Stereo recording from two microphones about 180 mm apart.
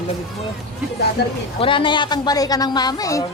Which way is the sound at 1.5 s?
30° left (ahead or behind).